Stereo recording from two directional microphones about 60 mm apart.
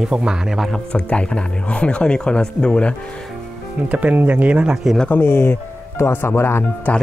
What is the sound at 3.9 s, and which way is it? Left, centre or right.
Speech, right.